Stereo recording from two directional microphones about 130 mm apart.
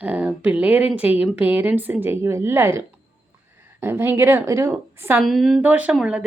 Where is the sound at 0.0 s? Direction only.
10° right (ahead or behind).